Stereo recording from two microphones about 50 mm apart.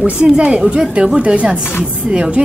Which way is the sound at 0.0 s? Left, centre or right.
Right.